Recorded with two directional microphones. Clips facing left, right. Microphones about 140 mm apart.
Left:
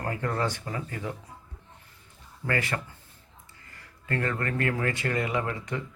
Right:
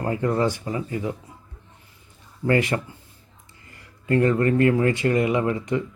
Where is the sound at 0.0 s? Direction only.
20° right (ahead or behind).